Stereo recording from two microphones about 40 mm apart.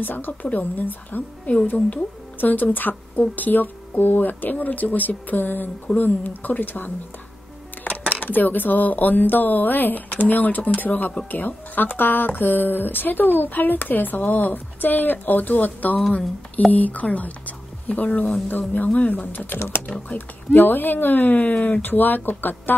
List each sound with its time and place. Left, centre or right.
0.0 s speech: left
8.1 s a woman's voice: left
18.0 s speech: left
18.5 s speech: left
18.9 s speech: left
19.3 s speech: left
21.5 s speech: left
21.8 s speech: left